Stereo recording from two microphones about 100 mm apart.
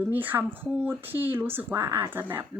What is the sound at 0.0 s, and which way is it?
Speech, 20° right (ahead or behind).